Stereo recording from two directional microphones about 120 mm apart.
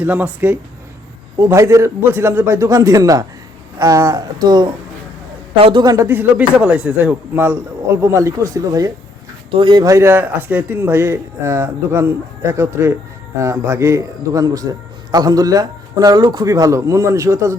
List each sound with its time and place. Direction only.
0.0 s a man's voice: 15° right (ahead or behind); by 4.7 s 35° right (ahead or behind)
5.5 s a man's voice: 50° right (ahead or behind)
5.8 s speech: 30° right (ahead or behind)
6.1 s a man's voice: 15° right (ahead or behind)
9.5 s a man's voice: 45° right (ahead or behind); by 17.6 s 25° right (ahead or behind)